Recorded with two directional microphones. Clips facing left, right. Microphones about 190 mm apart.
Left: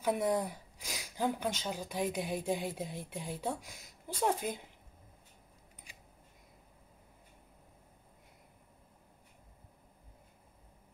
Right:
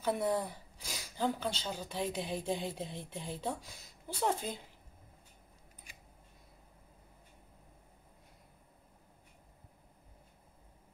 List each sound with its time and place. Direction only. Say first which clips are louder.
0.0 s a woman's voice: left 1 dB; 10° left (ahead or behind)